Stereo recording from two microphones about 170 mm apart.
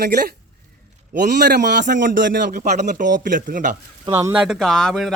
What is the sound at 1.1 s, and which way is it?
Speech, 75° right (ahead or behind).